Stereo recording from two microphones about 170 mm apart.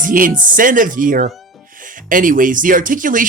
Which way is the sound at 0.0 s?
50° right (ahead or behind).